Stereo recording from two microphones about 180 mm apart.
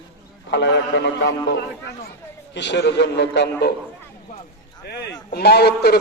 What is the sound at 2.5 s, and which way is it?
A man's voice, 75° left (ahead or behind).